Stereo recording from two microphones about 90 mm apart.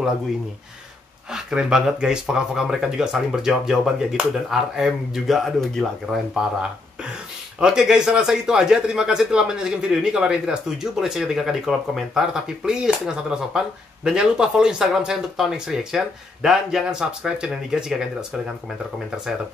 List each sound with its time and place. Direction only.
1.3 s speech: 5° right (ahead or behind)